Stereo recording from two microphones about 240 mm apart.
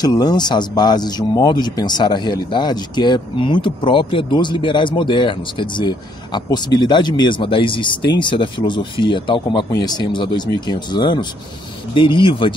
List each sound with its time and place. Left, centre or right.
0.0 s speech: centre